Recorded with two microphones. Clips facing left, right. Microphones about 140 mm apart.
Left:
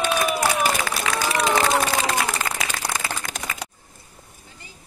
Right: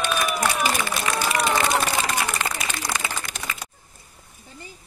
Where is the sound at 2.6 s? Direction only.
75° left (ahead or behind).